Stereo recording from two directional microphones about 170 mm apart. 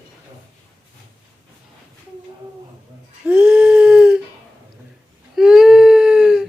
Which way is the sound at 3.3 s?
10° right (ahead or behind).